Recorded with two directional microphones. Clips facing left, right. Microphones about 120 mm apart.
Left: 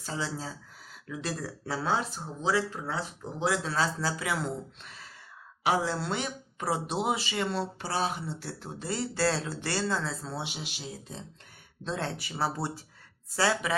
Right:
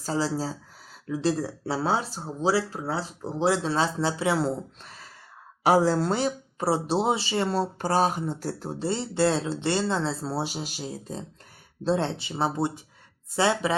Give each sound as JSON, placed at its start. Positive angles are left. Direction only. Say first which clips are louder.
{"t": 0.0, "sound": "speech", "louder": "right 8 dB", "side_deg": -35}
{"t": 8.9, "sound": "speech", "louder": "right 4 dB", "side_deg": -25}